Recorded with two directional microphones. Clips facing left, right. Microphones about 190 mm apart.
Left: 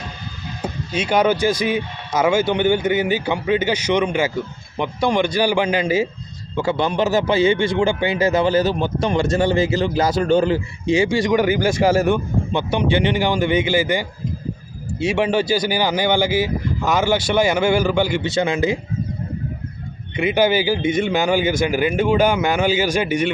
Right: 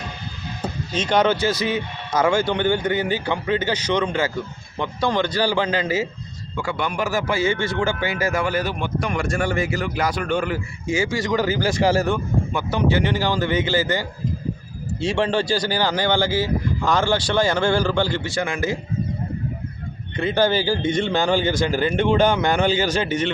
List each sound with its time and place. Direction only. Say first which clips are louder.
0.6 s speech: left 2 dB; 10° left (ahead or behind)
6.6 s a man's voice: left 6 dB; 25° left (ahead or behind)
20.1 s speech: left 2 dB; 10° left (ahead or behind)